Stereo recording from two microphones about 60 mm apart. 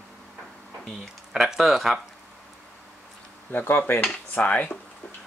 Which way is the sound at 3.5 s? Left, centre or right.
Left.